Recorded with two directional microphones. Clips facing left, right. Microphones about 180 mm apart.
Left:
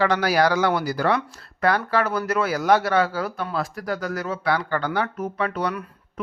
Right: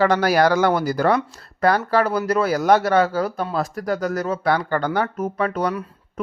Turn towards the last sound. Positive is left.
turn(degrees=-40)  # may be behind; listen again after turning